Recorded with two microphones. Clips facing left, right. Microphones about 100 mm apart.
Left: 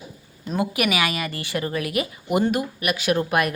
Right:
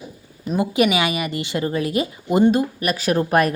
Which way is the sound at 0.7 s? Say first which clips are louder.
Right 7 dB; 25° right (ahead or behind).